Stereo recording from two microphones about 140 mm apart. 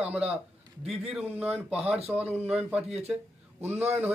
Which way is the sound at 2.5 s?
5° right (ahead or behind).